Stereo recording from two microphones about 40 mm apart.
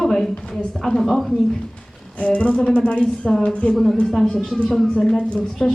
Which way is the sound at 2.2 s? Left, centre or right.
Left.